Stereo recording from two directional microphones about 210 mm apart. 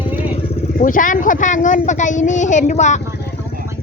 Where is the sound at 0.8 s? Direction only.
40° left (ahead or behind).